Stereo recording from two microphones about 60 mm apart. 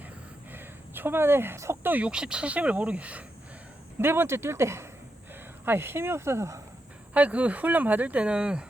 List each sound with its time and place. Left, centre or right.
0.5 s speech: right
1.8 s speech: right
2.0 s speech: centre
4.0 s speech: right
7.1 s speech: right